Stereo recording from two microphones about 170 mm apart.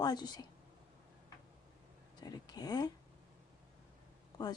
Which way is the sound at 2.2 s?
25° left (ahead or behind).